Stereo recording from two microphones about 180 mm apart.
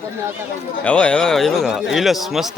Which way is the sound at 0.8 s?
5° left (ahead or behind).